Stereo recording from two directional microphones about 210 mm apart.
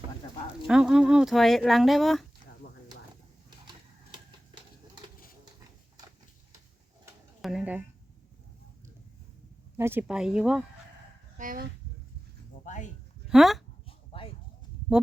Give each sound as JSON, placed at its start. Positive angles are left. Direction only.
{"t": 0.7, "sound": "speech", "side_deg": 0}
{"t": 7.4, "sound": "a sound", "side_deg": -5}
{"t": 9.7, "sound": "speech", "side_deg": -10}
{"t": 11.3, "sound": "speech", "side_deg": -40}
{"t": 12.6, "sound": "speech", "side_deg": 35}
{"t": 13.3, "sound": "speech", "side_deg": 0}
{"t": 14.1, "sound": "a sound", "side_deg": 25}